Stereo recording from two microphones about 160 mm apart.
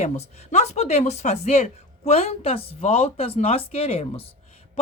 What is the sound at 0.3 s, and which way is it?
Speech, 45° left (ahead or behind).